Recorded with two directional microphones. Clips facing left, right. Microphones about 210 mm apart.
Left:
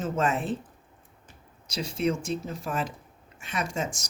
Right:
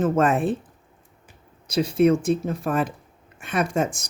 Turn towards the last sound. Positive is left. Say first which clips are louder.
# right 8 dB
turn(degrees=-55)  # may be behind; listen again after turning